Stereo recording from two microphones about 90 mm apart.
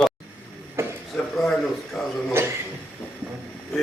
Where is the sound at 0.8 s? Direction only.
30° right (ahead or behind).